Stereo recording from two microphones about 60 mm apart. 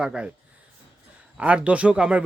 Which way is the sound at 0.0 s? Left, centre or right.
Centre.